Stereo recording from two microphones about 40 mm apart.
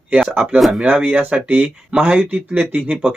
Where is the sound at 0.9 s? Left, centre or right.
Right.